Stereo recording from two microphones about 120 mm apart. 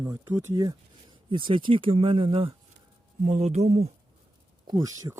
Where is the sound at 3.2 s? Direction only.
65° right (ahead or behind).